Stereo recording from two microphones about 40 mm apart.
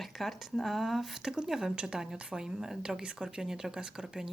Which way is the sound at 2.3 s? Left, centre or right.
Centre.